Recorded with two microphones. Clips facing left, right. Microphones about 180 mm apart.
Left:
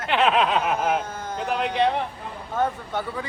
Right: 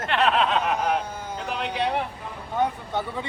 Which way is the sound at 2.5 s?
15° right (ahead or behind).